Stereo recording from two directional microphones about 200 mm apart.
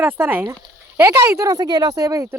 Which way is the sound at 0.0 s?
10° right (ahead or behind).